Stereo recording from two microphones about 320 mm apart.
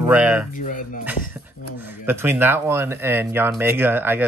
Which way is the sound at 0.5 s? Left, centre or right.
Left.